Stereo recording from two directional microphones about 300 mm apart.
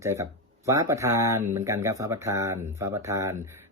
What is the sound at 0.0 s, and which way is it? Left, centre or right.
Speech, centre.